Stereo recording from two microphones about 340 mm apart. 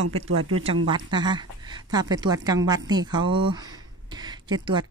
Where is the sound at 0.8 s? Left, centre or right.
Centre.